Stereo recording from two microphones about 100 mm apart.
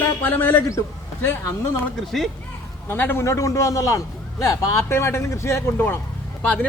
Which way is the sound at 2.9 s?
20° left (ahead or behind).